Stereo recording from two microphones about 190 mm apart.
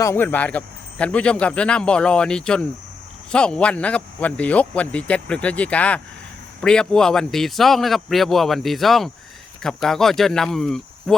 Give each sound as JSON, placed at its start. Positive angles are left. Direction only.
{"t": 0.0, "sound": "speech", "side_deg": 10}